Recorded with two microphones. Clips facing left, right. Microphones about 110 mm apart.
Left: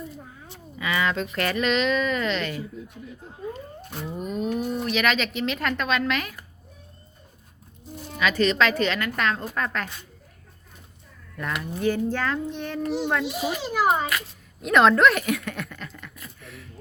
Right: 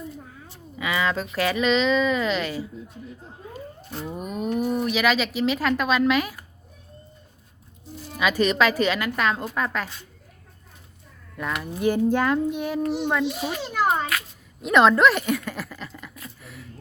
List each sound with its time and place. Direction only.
0.8 s speech: 15° right (ahead or behind)
4.1 s speech: 10° right (ahead or behind)
8.2 s speech: 10° right (ahead or behind)
11.3 s a child's voice: 5° right (ahead or behind)